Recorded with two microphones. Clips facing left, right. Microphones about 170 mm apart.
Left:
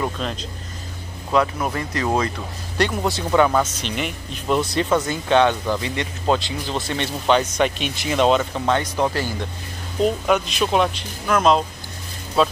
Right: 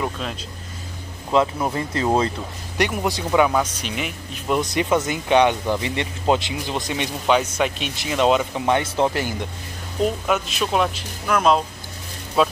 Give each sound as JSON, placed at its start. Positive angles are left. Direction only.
{"t": 0.0, "sound": "speech", "side_deg": -5}
{"t": 1.3, "sound": "speech", "side_deg": -20}
{"t": 2.8, "sound": "speech", "side_deg": -15}
{"t": 4.6, "sound": "speech", "side_deg": -15}
{"t": 10.2, "sound": "speech", "side_deg": 0}